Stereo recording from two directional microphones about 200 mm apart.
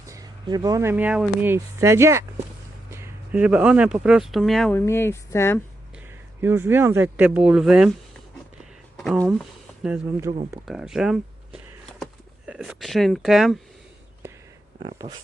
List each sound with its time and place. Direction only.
0.0 s speech: 15° right (ahead or behind); by 4.8 s centre (ahead or behind)
4.9 s speech: 10° left (ahead or behind)
6.1 s speech: 10° right (ahead or behind)
9.1 s speech: 5° right (ahead or behind)
10.7 s a sound: centre (ahead or behind)
12.5 s speech: 5° right (ahead or behind)
14.8 s speech: 25° right (ahead or behind)